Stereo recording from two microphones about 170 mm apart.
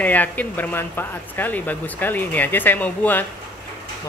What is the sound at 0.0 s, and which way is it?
Speech, 10° left (ahead or behind).